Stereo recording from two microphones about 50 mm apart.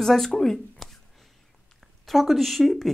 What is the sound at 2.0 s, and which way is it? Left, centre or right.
Speech, centre.